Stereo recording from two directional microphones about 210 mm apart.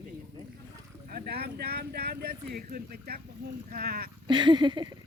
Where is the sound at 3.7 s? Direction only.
45° right (ahead or behind).